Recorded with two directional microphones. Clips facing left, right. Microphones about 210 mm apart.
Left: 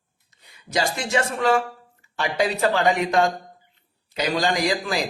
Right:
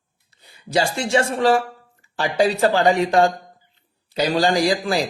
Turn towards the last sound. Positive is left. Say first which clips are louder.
# right 4 dB
turn(degrees=-30)  # may be behind; listen again after turning